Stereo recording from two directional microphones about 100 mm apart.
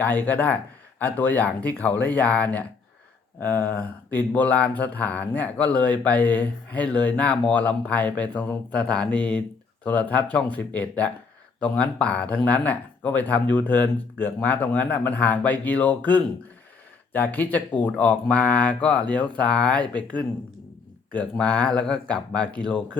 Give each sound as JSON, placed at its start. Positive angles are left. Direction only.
{"t": 0.0, "sound": "speech", "side_deg": 15}